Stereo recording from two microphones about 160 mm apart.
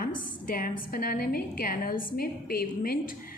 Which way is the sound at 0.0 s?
60° left (ahead or behind).